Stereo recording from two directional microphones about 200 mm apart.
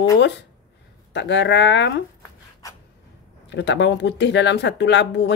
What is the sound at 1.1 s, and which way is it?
Speech, 60° left (ahead or behind).